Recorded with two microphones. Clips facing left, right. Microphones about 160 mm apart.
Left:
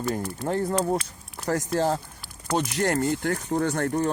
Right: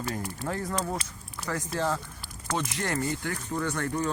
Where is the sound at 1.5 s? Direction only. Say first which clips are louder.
Left 6 dB; 40° left (ahead or behind).